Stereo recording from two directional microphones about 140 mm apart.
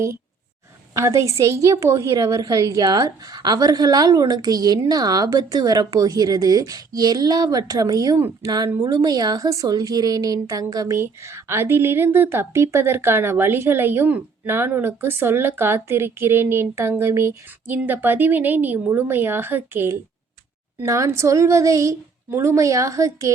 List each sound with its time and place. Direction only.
0.9 s a woman's voice: 20° right (ahead or behind)